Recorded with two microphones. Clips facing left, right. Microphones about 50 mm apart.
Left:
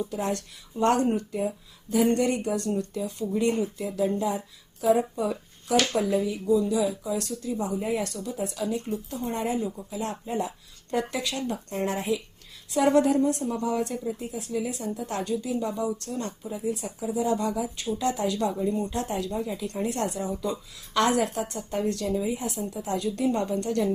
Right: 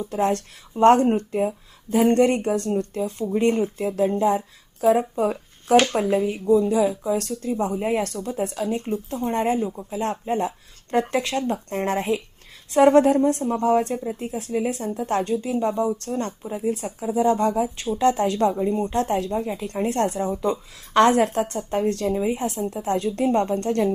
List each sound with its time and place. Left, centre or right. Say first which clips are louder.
0.1 s speech: right 7 dB; right